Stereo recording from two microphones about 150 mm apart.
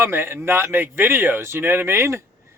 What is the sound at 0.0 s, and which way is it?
A man's voice, 15° right (ahead or behind).